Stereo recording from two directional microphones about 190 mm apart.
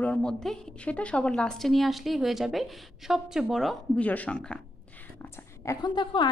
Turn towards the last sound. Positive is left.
turn(degrees=25)  # may be behind; listen again after turning